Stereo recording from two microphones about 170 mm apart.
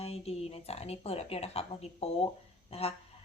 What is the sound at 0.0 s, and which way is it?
A woman's voice, 35° left (ahead or behind).